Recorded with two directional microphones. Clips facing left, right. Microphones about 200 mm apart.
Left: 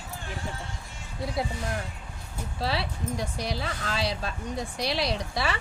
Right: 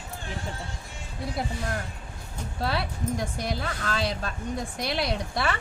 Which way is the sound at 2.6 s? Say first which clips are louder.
Right 1 dB; 50° right (ahead or behind).